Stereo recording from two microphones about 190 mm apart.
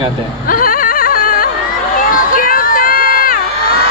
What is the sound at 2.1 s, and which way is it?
Crowd, 45° left (ahead or behind).